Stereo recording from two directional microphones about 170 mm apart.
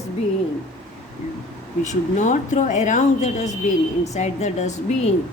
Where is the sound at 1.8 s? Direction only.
45° left (ahead or behind).